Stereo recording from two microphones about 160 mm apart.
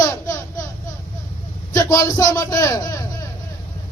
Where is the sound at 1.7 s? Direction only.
20° left (ahead or behind).